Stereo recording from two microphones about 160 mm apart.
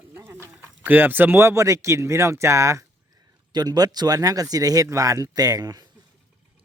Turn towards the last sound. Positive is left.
turn(degrees=-25)  # may be behind; listen again after turning